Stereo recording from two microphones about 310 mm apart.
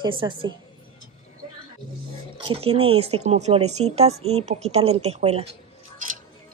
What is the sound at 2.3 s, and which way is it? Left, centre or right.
Speech, centre.